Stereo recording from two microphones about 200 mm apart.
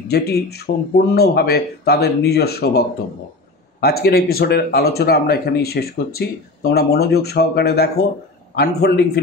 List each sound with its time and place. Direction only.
0.1 s speech: 55° left (ahead or behind)
3.8 s speech: 50° left (ahead or behind)